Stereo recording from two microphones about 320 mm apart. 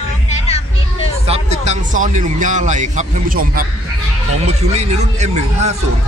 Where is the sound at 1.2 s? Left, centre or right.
Right.